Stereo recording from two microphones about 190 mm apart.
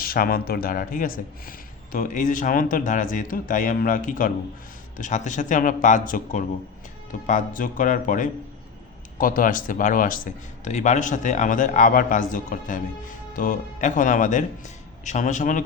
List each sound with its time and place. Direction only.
0.0 s speech: 50° left (ahead or behind)